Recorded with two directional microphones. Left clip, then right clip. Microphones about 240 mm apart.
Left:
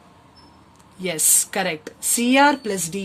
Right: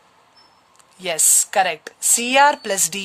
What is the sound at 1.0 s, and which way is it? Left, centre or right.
Speech, right.